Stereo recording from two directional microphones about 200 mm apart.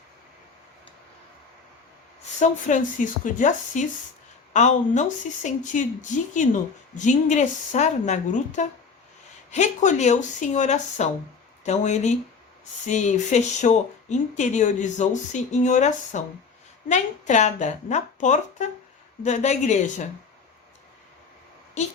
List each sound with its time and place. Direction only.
2.4 s speech: 40° left (ahead or behind)